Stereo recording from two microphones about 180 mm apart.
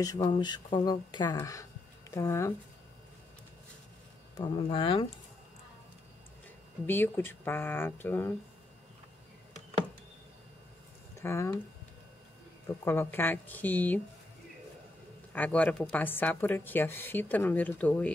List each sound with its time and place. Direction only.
0.0 s speech: 20° left (ahead or behind)
4.4 s speech: 25° left (ahead or behind)
6.9 s a woman's voice: 10° left (ahead or behind)
11.1 s speech: 15° left (ahead or behind)
12.8 s a woman's voice: 15° left (ahead or behind)
15.3 s a woman's voice: 10° left (ahead or behind)